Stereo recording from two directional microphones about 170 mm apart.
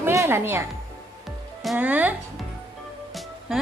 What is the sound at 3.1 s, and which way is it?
Music, centre (ahead or behind).